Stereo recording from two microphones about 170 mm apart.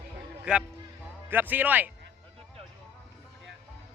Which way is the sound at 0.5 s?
5° right (ahead or behind).